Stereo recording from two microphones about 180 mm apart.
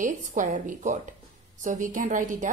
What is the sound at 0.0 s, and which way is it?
A woman's voice, 45° right (ahead or behind).